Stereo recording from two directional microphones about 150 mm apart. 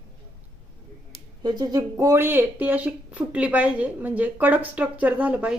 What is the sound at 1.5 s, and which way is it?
Speech, 25° right (ahead or behind).